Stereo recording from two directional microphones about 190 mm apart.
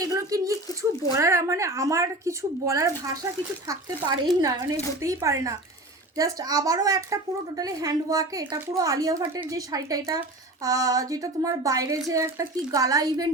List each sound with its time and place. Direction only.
0.0 s a woman's voice: 20° right (ahead or behind)
4.4 s a woman's voice: 20° right (ahead or behind)